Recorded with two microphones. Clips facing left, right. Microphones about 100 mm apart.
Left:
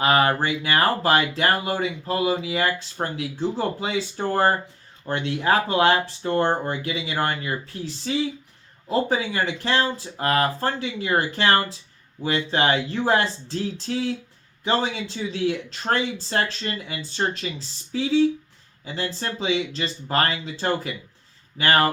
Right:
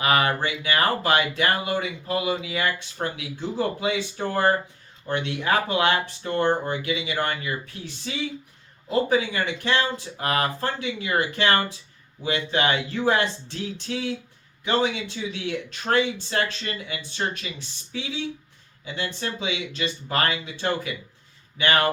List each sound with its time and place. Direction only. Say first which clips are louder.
0.0 s speech: left 2 dB; 30° left (ahead or behind)
8.9 s speech: right 1 dB; 35° left (ahead or behind)